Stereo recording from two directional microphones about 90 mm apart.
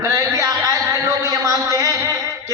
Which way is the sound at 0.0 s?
45° right (ahead or behind).